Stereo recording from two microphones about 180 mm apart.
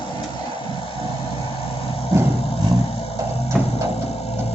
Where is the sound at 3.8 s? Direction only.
35° left (ahead or behind).